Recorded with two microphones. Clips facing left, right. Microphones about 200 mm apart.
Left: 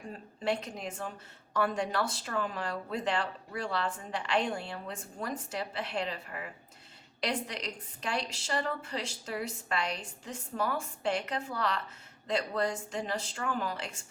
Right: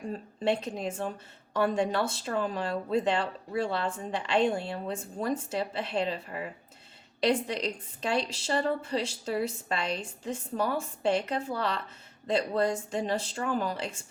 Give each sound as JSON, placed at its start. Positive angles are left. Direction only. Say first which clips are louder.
{"t": 0.4, "sound": "speech", "louder": "right 4 dB", "side_deg": -25}